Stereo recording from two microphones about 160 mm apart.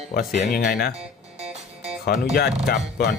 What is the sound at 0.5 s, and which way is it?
Speech, 70° left (ahead or behind).